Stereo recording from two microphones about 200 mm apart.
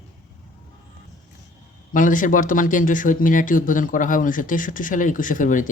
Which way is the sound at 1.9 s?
40° left (ahead or behind).